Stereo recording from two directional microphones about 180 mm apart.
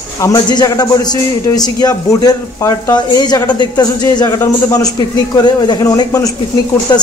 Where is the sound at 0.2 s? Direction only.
20° left (ahead or behind).